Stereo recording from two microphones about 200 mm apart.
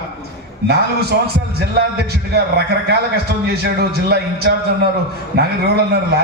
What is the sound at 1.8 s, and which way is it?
Speech, 50° right (ahead or behind).